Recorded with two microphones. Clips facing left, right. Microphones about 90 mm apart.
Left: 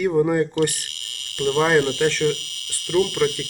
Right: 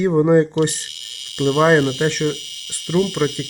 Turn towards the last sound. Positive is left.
turn(degrees=-20)  # may be behind; listen again after turning